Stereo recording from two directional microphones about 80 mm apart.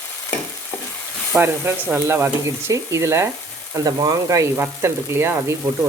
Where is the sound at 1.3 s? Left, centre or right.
Right.